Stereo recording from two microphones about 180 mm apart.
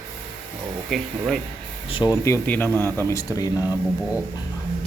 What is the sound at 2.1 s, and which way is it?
Speech, 15° left (ahead or behind).